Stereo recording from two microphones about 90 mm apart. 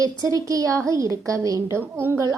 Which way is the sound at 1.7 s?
25° right (ahead or behind).